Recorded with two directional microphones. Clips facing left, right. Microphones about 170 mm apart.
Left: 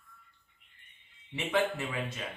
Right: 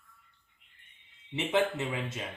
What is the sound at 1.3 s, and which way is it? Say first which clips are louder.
Speech: right 2 dB; 20° right (ahead or behind).